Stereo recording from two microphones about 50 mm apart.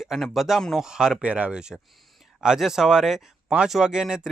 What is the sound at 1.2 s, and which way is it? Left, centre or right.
Speech, right.